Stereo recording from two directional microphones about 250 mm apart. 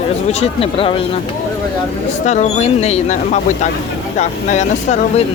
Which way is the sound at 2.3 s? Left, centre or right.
Left.